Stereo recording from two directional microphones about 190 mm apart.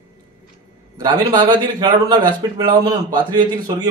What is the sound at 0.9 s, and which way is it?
A man's voice, 20° right (ahead or behind).